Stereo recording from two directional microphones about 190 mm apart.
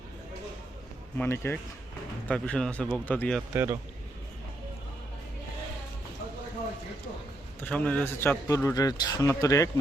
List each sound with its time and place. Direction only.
1.2 s a man's voice: 10° left (ahead or behind)
3.5 s a man's voice: 10° right (ahead or behind)
7.6 s a man's voice: 5° left (ahead or behind)